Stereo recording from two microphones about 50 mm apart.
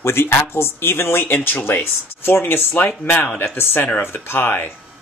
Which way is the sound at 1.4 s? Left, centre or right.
Left.